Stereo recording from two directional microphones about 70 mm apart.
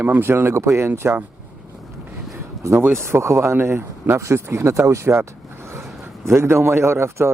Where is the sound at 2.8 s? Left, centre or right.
Right.